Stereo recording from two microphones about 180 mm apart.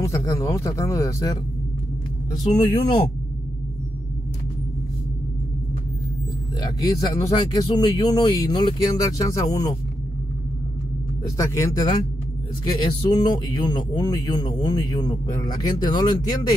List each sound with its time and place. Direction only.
0.0 s speech: 20° left (ahead or behind)
2.4 s speech: 35° left (ahead or behind)
6.6 s speech: 20° left (ahead or behind)
11.2 s speech: 15° left (ahead or behind)